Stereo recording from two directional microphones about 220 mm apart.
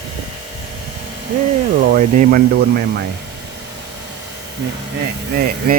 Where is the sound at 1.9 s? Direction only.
40° right (ahead or behind).